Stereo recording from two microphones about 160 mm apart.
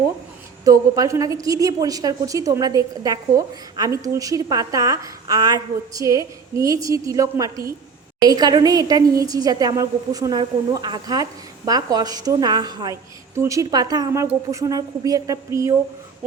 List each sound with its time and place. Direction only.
0.6 s a woman's voice: 20° right (ahead or behind)